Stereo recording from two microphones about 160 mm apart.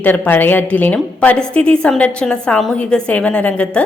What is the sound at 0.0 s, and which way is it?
A woman's voice, 10° left (ahead or behind).